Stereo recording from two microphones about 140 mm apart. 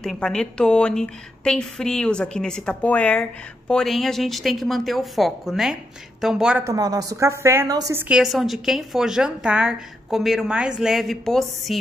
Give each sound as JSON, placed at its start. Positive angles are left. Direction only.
{"t": 0.0, "sound": "a woman's voice", "side_deg": 5}
{"t": 6.6, "sound": "a woman's voice", "side_deg": -25}
{"t": 8.0, "sound": "a woman's voice", "side_deg": -5}